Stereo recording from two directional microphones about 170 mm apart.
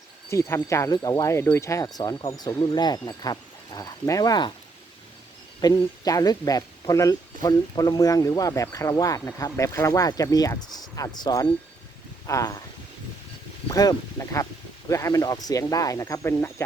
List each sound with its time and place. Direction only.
0.3 s speech: 15° left (ahead or behind)
5.5 s speech: 20° left (ahead or behind)
13.7 s speech: 20° left (ahead or behind)